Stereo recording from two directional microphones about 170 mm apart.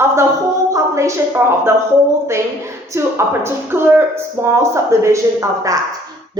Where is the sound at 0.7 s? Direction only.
15° right (ahead or behind).